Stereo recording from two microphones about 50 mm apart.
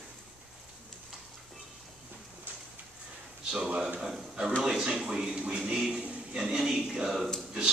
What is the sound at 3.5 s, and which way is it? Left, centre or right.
A man's voice, centre.